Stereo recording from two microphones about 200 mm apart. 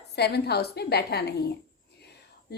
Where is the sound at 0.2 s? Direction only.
55° left (ahead or behind).